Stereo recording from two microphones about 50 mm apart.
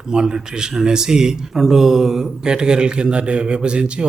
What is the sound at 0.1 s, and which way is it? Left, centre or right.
A man's voice, centre.